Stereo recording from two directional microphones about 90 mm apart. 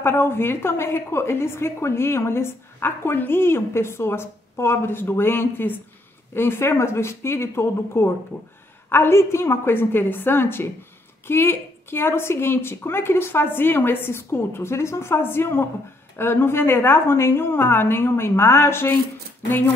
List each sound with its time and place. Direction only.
0.0 s a woman's voice: 25° left (ahead or behind)